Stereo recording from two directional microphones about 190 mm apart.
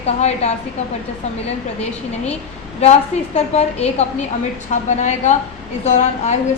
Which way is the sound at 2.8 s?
35° left (ahead or behind).